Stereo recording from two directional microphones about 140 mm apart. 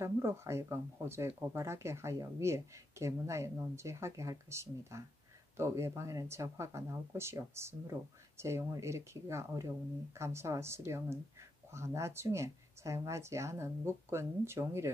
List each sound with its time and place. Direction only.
0.0 s speech: 20° right (ahead or behind)